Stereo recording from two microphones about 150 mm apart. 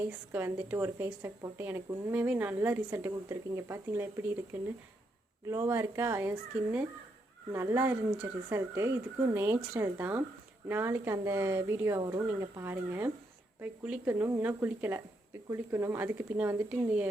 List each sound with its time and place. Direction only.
0.0 s a woman's voice: 15° right (ahead or behind)
5.5 s a woman's voice: 20° right (ahead or behind)